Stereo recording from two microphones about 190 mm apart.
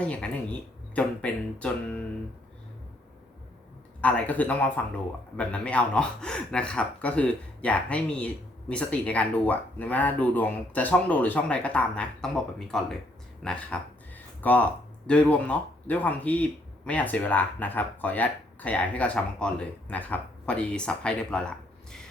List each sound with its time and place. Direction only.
0.0 s speech: 5° left (ahead or behind)
4.0 s speech: 10° left (ahead or behind)